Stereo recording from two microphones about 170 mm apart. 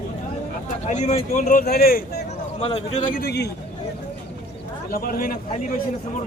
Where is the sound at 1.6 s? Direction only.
65° left (ahead or behind).